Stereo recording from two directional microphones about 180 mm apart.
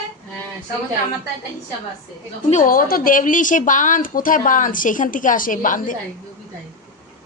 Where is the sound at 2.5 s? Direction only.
50° left (ahead or behind).